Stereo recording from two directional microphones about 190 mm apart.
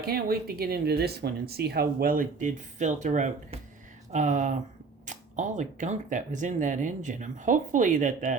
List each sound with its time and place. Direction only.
0.0 s speech: 55° right (ahead or behind)